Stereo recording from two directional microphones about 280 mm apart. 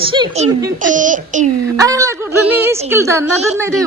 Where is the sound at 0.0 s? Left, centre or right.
Centre.